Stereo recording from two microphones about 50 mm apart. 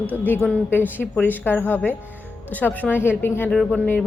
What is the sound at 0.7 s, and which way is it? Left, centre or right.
A woman's voice, left.